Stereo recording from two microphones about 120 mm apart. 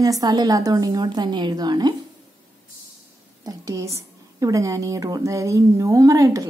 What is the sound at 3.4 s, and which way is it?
A woman's voice, 30° right (ahead or behind).